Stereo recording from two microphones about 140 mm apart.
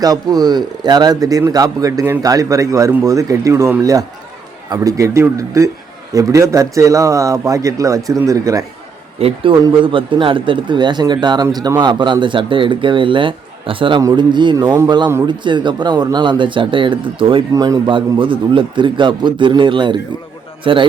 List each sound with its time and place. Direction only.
0.0 s speech: 25° right (ahead or behind)
9.1 s speech: 40° right (ahead or behind)
17.5 s speech: 25° right (ahead or behind)
17.8 s speech: 35° right (ahead or behind)